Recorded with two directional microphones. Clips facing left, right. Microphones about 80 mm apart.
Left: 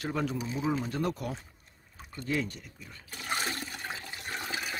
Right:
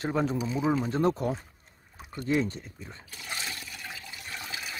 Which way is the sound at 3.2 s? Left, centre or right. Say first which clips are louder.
Left 4 dB; left.